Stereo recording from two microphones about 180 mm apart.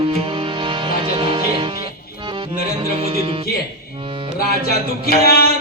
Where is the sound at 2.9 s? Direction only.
30° right (ahead or behind).